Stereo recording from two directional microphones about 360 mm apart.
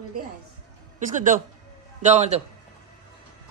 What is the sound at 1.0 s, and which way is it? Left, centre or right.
A man's voice, right.